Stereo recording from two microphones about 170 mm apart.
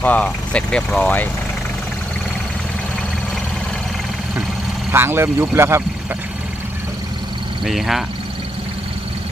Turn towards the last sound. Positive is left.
turn(degrees=0)  # may be behind; listen again after turning